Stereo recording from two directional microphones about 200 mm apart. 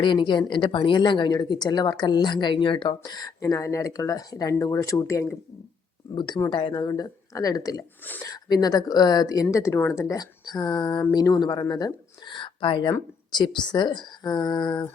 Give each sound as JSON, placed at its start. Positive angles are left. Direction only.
{"t": 0.0, "sound": "speech", "side_deg": 25}